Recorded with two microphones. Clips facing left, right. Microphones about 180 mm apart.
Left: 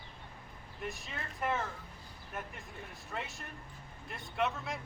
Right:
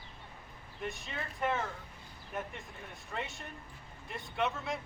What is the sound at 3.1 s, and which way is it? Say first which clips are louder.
Speech: right 2 dB; centre (ahead or behind).